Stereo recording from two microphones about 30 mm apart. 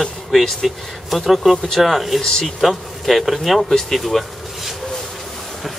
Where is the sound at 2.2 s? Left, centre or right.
Left.